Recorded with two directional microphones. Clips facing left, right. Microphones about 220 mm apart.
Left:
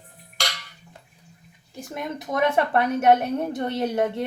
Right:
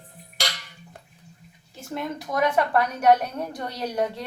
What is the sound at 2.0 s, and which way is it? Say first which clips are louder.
A woman's voice: left 1 dB; 20° left (ahead or behind).